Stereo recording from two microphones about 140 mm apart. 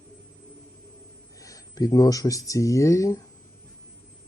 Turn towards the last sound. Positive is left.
turn(degrees=20)  # may be behind; listen again after turning